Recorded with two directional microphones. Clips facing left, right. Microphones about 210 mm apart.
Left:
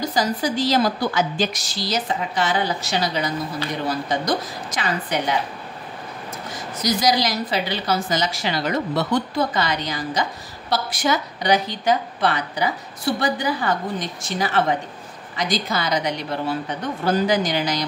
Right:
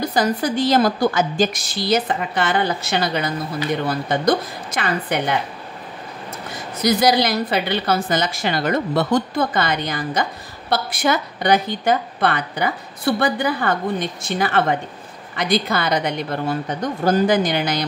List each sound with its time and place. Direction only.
0.0 s a woman's voice: 55° right (ahead or behind)
6.5 s a woman's voice: 55° right (ahead or behind)